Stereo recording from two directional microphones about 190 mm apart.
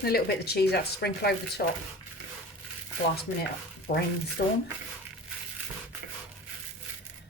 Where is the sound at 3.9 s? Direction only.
55° left (ahead or behind).